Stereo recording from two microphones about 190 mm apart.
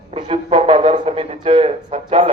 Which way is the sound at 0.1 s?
30° right (ahead or behind).